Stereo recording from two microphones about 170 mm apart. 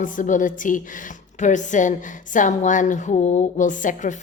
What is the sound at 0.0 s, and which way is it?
Speech, 50° left (ahead or behind).